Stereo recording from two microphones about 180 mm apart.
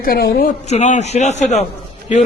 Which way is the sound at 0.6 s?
40° left (ahead or behind).